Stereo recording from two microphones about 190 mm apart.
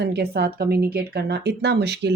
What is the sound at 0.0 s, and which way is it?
Speech, 60° right (ahead or behind).